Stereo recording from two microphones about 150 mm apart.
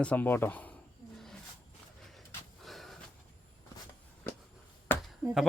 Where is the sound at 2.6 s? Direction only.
Centre (ahead or behind).